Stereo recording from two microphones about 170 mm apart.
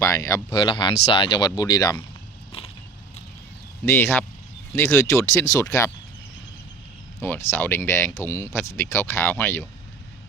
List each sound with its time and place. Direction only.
0.0 s speech: 20° left (ahead or behind)
3.8 s speech: 15° left (ahead or behind)
7.2 s speech: 15° left (ahead or behind)